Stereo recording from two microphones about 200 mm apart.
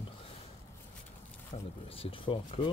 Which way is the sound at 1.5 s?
30° left (ahead or behind).